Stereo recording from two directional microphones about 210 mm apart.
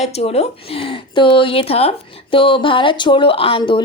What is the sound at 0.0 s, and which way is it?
Speech, 30° left (ahead or behind).